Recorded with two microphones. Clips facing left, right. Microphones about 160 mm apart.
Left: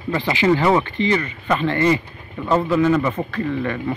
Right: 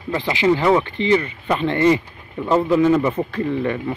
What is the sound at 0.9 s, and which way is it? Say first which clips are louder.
Speech: right 2 dB; 25° right (ahead or behind).